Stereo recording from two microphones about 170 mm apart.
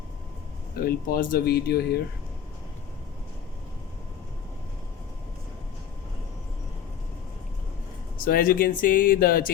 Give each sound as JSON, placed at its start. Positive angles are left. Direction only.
{"t": 0.8, "sound": "speech", "side_deg": 60}
{"t": 8.2, "sound": "speech", "side_deg": 55}